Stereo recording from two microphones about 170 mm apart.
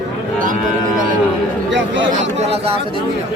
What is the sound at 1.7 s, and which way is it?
Speech, 90° right.